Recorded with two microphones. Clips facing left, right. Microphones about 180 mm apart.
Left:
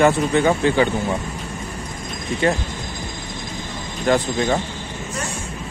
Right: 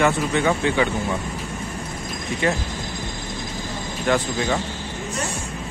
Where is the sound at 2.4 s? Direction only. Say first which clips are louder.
Left 3 dB; 35° left (ahead or behind).